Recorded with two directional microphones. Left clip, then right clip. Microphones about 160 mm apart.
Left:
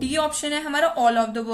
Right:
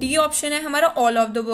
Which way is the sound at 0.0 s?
40° right (ahead or behind).